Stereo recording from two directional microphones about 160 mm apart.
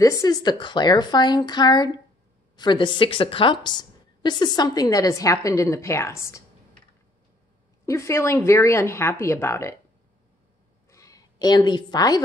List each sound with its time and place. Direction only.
0.0 s a woman's voice: 20° left (ahead or behind)
7.8 s speech: 15° left (ahead or behind)
10.9 s a sound: 20° left (ahead or behind)